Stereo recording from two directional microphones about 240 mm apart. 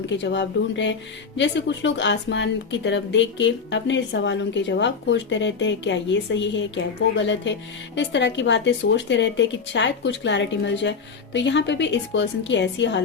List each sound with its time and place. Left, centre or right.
0.2 s speech: left